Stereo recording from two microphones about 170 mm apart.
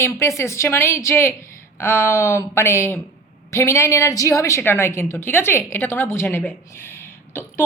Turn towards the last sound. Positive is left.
turn(degrees=15)  # may be behind; listen again after turning